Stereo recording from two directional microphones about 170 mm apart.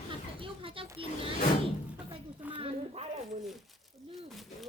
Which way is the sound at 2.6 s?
35° right (ahead or behind).